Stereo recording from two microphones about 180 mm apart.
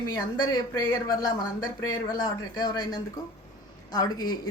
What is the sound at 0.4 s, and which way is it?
A woman's voice, 20° left (ahead or behind).